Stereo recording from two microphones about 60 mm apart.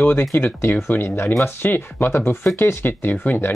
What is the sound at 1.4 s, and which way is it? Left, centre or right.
Speech, left.